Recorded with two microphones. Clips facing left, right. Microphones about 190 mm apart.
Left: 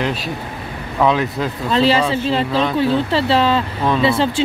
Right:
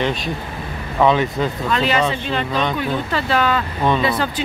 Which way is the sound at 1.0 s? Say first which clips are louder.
Right 1 dB; centre (ahead or behind).